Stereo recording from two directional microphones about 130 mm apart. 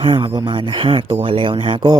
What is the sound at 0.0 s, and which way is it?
Speech, 40° right (ahead or behind).